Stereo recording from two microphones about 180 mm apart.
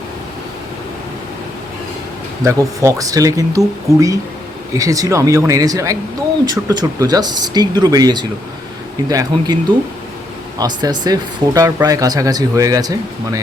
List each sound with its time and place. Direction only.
2.4 s speech: 15° right (ahead or behind)
10.6 s speech: 20° right (ahead or behind)